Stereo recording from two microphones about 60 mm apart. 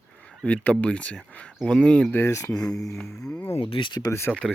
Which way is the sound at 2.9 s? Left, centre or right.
Centre.